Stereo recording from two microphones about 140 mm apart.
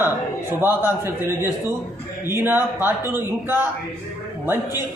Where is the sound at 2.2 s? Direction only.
15° right (ahead or behind).